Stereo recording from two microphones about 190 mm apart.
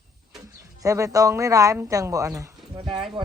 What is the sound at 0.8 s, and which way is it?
Speech, 15° right (ahead or behind).